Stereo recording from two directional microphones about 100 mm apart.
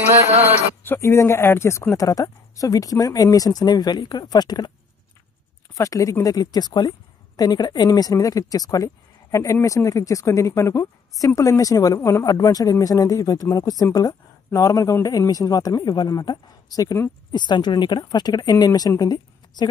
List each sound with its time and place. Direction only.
0.8 s speech: 25° left (ahead or behind); by 4.7 s 45° left (ahead or behind)
5.8 s speech: 35° left (ahead or behind)
17.3 s speech: 45° left (ahead or behind)